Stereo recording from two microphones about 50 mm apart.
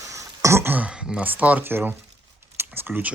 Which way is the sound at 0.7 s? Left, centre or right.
Right.